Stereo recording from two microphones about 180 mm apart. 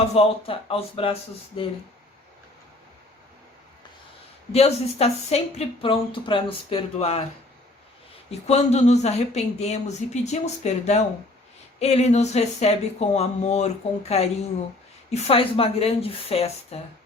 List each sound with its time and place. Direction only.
0.0 s speech: 35° left (ahead or behind)
4.5 s speech: 35° left (ahead or behind)
8.3 s speech: 35° left (ahead or behind)